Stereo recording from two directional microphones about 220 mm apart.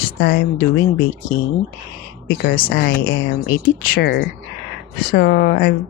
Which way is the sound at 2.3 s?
40° left (ahead or behind).